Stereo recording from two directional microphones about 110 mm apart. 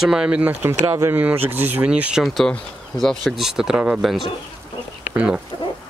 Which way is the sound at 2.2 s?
5° left (ahead or behind).